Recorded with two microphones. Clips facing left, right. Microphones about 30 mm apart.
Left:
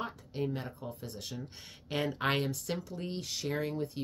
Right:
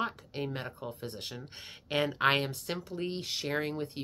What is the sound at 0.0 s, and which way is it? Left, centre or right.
Speech, right.